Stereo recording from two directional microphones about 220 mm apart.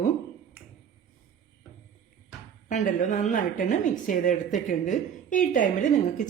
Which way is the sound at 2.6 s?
35° left (ahead or behind).